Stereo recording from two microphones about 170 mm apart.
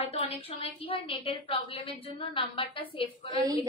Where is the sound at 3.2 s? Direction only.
20° right (ahead or behind).